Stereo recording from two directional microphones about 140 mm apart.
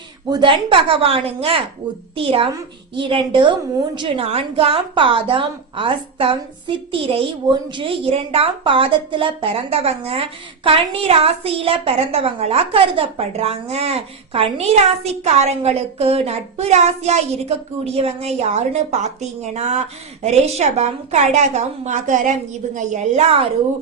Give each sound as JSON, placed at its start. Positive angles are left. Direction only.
{"t": 0.3, "sound": "a woman's voice", "side_deg": -35}